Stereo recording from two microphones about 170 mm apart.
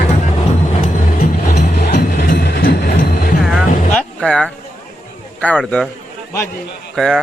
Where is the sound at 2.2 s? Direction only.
75° left (ahead or behind).